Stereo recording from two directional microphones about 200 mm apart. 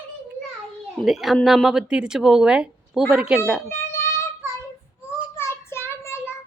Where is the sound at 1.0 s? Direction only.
Centre (ahead or behind).